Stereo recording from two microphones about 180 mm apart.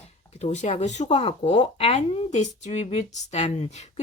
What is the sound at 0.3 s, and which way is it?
Speech, 35° left (ahead or behind).